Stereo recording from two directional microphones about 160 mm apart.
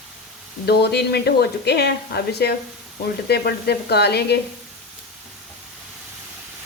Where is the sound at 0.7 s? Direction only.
90° left.